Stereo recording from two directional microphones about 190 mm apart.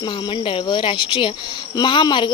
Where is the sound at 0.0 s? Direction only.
25° left (ahead or behind).